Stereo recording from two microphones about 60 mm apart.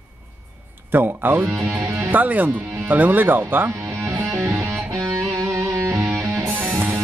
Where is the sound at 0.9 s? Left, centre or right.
Right.